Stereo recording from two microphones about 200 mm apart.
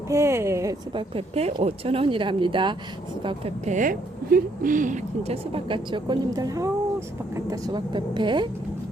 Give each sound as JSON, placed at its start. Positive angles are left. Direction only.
{"t": 0.1, "sound": "a woman's voice", "side_deg": -15}